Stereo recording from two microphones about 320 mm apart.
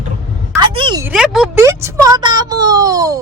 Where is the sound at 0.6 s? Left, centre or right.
Centre.